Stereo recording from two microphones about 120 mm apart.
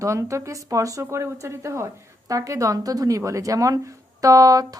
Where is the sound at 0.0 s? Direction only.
25° right (ahead or behind).